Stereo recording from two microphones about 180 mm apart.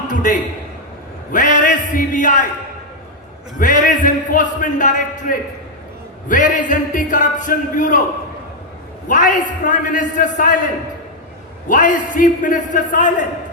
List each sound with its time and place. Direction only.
0.1 s a man's voice: 45° left (ahead or behind)
3.6 s a man's voice: 45° left (ahead or behind)
9.0 s a man's voice: 45° left (ahead or behind)
11.7 s a man's voice: 45° left (ahead or behind)